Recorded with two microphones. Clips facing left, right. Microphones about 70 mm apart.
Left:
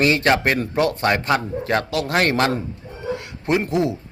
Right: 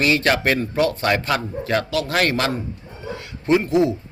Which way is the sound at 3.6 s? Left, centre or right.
Left.